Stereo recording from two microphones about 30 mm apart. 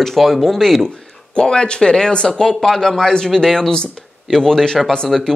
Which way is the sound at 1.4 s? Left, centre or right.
Left.